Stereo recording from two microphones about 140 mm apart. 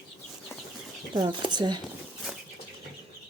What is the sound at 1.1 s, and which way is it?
Speech, 35° right (ahead or behind).